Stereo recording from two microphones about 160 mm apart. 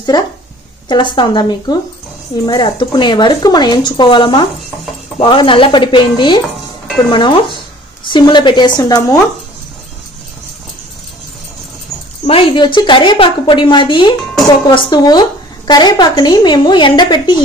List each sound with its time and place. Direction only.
0.1 s a woman's voice: 25° left (ahead or behind)
12.3 s a woman's voice: 35° left (ahead or behind)